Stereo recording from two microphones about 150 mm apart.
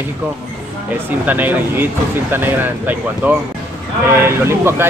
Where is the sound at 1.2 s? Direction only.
10° right (ahead or behind).